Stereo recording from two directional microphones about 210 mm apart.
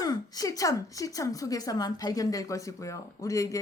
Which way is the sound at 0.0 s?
20° left (ahead or behind).